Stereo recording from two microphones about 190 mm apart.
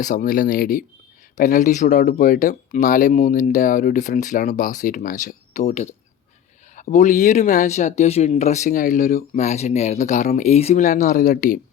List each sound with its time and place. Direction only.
0.0 s speech: 45° left (ahead or behind)